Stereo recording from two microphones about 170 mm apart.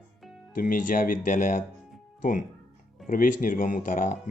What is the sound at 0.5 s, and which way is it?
Speech, 55° left (ahead or behind).